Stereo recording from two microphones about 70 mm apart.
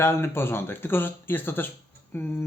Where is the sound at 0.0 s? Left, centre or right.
Left.